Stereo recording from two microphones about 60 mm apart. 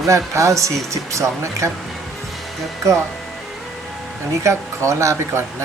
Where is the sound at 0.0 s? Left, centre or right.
Right.